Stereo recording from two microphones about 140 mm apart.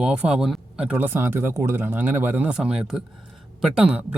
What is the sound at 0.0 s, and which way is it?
Speech, 5° right (ahead or behind).